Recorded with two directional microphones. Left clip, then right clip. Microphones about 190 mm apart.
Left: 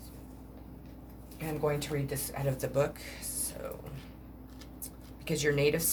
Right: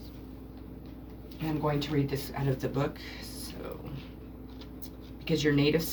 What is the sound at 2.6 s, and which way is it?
Speech, 50° left (ahead or behind).